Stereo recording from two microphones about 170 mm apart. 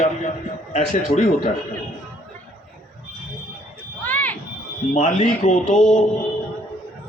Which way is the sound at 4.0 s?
10° left (ahead or behind).